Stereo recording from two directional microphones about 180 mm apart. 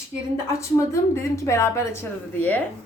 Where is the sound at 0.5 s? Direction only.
15° left (ahead or behind).